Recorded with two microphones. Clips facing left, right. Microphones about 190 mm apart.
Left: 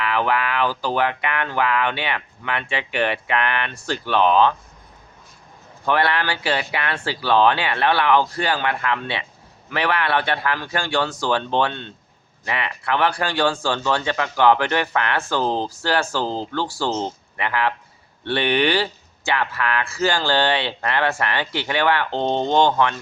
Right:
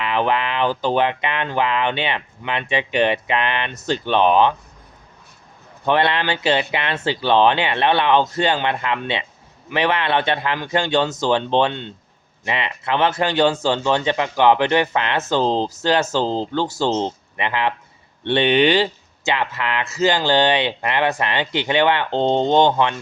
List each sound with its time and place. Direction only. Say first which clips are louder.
0.0 s speech: right 1 dB; 20° right (ahead or behind)
5.8 s speech: right 2 dB; 20° right (ahead or behind)